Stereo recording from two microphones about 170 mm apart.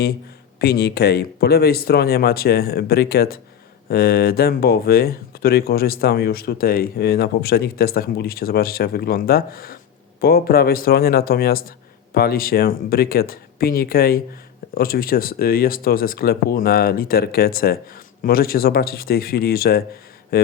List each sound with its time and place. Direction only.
0.6 s speech: 70° left (ahead or behind)